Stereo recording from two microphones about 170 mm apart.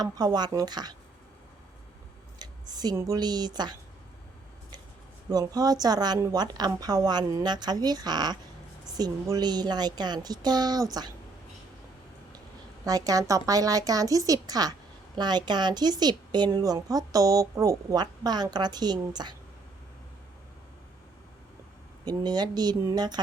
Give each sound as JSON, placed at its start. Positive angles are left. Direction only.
{"t": 0.0, "sound": "a woman's voice", "side_deg": -25}
{"t": 2.4, "sound": "speech", "side_deg": -25}
{"t": 5.3, "sound": "a woman's voice", "side_deg": -20}
{"t": 12.8, "sound": "a woman's voice", "side_deg": -20}
{"t": 22.0, "sound": "a woman's voice", "side_deg": -25}